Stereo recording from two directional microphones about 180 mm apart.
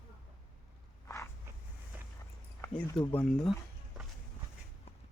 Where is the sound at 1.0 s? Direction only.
15° left (ahead or behind).